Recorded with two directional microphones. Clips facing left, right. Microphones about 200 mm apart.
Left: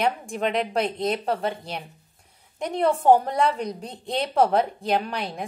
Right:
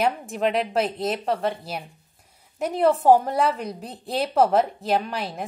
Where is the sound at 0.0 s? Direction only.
5° right (ahead or behind).